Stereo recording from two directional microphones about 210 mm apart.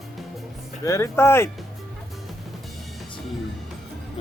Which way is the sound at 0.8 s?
15° left (ahead or behind).